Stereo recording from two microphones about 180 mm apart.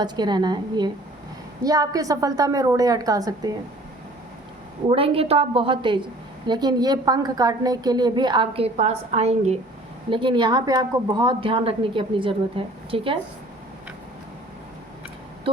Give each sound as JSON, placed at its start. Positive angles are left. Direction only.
{"t": 0.0, "sound": "a woman's voice", "side_deg": -25}
{"t": 4.9, "sound": "a woman's voice", "side_deg": -30}